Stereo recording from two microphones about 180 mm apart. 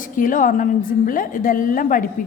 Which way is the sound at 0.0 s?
45° left (ahead or behind).